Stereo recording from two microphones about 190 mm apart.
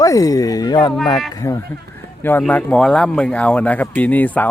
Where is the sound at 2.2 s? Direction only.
10° left (ahead or behind).